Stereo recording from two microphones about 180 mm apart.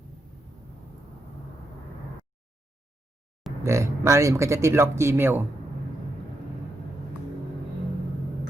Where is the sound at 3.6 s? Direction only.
15° right (ahead or behind).